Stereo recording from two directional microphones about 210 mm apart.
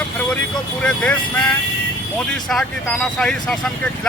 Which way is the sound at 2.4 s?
Centre (ahead or behind).